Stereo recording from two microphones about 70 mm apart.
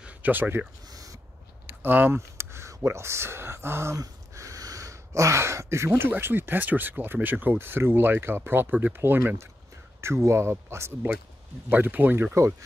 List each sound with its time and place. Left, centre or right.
0.0 s speech: right
1.7 s a sound: right
2.1 s speech: right
3.9 s speech: right
11.7 s speech: right